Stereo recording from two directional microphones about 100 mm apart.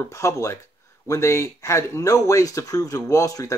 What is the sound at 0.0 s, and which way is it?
Speech, 30° left (ahead or behind).